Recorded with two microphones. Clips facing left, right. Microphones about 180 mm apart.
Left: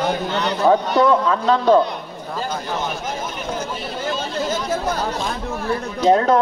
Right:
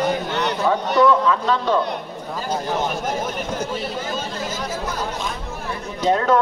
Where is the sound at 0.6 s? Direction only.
40° left (ahead or behind).